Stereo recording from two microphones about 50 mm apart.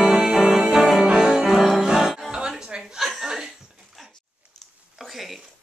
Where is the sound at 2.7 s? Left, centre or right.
Right.